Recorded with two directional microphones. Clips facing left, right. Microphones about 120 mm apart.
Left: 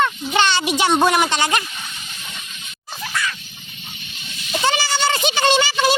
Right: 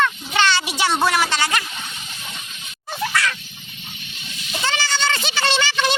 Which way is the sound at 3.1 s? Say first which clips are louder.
Right 1 dB; 90° right.